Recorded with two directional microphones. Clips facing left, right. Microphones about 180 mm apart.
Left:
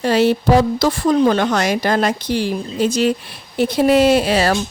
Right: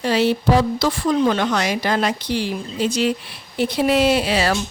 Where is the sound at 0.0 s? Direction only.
45° left (ahead or behind).